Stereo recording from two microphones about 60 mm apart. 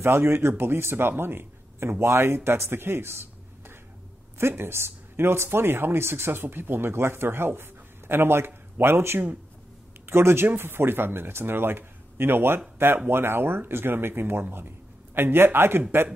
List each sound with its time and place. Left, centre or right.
0.0 s speech: right